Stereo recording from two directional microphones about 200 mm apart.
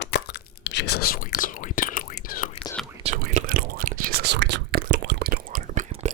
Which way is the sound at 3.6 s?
50° right (ahead or behind).